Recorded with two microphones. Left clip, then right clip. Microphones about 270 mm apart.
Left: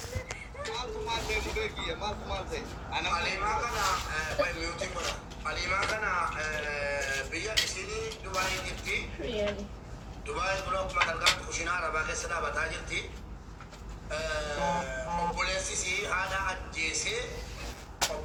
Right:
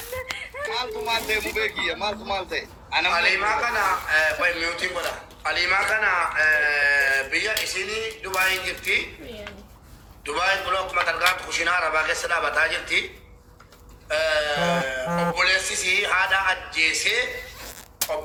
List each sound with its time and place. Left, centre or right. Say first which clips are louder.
0.7 s speech: right 8 dB; right
10.2 s speech: right 9 dB; right
14.1 s speech: right 11 dB; right